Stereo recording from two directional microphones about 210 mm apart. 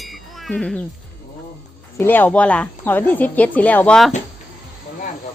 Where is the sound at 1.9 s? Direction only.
10° left (ahead or behind).